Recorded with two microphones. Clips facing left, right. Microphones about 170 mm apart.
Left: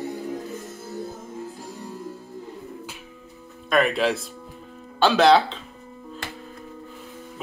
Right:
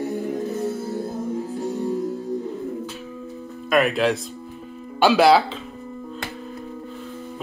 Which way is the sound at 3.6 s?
Centre (ahead or behind).